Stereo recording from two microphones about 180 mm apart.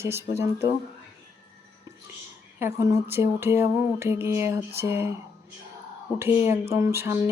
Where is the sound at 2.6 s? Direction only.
15° right (ahead or behind).